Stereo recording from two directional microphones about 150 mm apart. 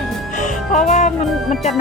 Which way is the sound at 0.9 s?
55° left (ahead or behind).